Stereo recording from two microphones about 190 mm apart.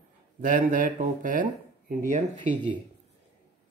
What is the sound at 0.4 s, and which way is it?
Speech, 45° right (ahead or behind).